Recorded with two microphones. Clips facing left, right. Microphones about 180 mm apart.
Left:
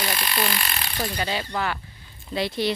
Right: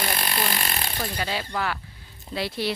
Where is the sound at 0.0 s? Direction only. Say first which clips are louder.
Left 1 dB; 45° right (ahead or behind).